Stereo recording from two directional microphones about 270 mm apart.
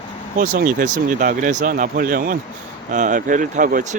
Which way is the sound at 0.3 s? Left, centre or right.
Right.